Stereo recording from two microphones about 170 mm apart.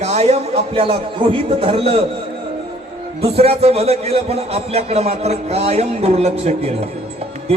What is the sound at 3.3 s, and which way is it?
A man's voice, 35° right (ahead or behind).